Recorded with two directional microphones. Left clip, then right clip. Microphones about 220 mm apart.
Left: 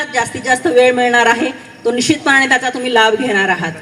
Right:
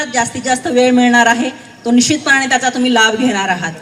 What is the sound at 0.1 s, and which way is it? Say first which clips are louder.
A woman's voice: left 2 dB; 55° right (ahead or behind).